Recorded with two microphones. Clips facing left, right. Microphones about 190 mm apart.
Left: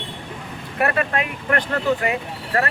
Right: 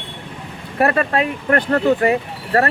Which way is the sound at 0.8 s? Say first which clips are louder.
Right 5 dB; 35° right (ahead or behind).